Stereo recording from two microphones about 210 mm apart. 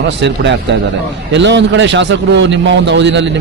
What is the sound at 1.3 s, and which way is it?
A man's voice, 55° right (ahead or behind).